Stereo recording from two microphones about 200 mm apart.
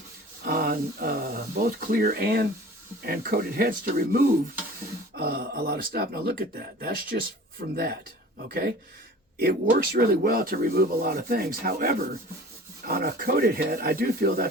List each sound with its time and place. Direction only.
0.4 s speech: 50° right (ahead or behind)
8.4 s speech: 45° right (ahead or behind)